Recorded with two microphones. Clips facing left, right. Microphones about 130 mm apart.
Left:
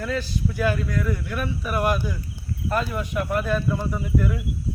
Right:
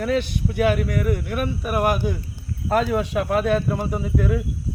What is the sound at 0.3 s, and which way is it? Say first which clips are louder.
Speech: right 4 dB; 65° right (ahead or behind).